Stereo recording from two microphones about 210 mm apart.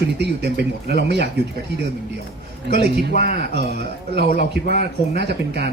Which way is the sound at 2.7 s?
50° right (ahead or behind).